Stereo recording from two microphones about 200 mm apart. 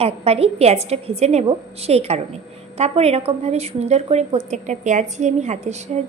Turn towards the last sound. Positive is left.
turn(degrees=-35)  # may be behind; listen again after turning